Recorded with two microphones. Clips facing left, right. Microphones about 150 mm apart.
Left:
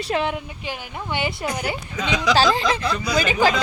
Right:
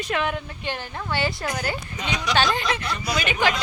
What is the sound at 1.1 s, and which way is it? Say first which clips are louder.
Speech: left 1 dB; 15° left (ahead or behind).